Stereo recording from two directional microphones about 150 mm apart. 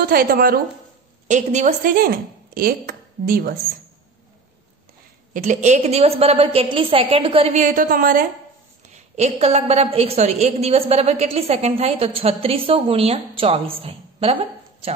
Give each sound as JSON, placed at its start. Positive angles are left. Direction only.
{"t": 0.0, "sound": "a woman's voice", "side_deg": -80}
{"t": 1.2, "sound": "speech", "side_deg": -50}
{"t": 5.3, "sound": "a woman's voice", "side_deg": -55}
{"t": 7.6, "sound": "a woman's voice", "side_deg": -65}
{"t": 8.8, "sound": "a woman's voice", "side_deg": -50}